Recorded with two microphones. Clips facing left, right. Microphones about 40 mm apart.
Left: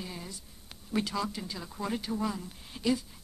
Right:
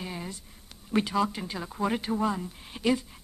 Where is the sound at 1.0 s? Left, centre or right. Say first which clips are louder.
Right 6 dB; right.